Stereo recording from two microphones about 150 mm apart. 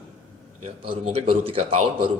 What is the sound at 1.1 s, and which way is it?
Speech, 40° right (ahead or behind).